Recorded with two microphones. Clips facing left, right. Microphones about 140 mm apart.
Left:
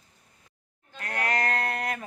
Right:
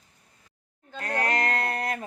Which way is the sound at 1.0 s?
35° right (ahead or behind).